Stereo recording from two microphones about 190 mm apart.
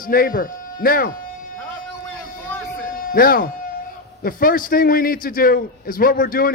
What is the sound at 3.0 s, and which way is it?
A man's voice, 50° left (ahead or behind).